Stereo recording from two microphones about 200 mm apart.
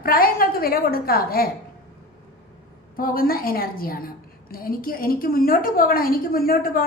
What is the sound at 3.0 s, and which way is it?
A woman's voice, 45° left (ahead or behind).